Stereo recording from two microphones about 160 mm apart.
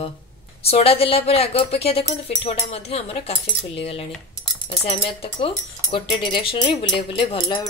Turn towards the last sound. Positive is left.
turn(degrees=30)  # may be behind; listen again after turning